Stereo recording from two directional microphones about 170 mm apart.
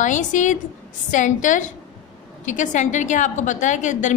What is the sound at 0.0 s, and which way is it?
A woman's voice, 45° left (ahead or behind).